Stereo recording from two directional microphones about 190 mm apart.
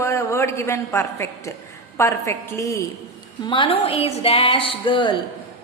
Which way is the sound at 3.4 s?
25° left (ahead or behind).